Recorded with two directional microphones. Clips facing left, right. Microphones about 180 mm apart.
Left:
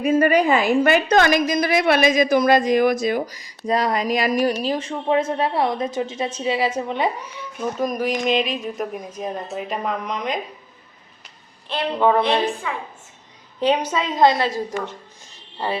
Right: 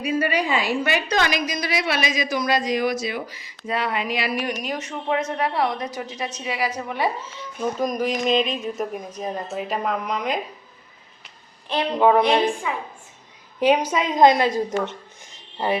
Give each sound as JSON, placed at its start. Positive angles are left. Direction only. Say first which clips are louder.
{"t": 0.0, "sound": "a woman's voice", "louder": "left 6 dB", "side_deg": 45}
{"t": 7.8, "sound": "a woman's voice", "louder": "left 2 dB", "side_deg": 5}
{"t": 11.7, "sound": "a woman's voice", "louder": "right 1 dB", "side_deg": -15}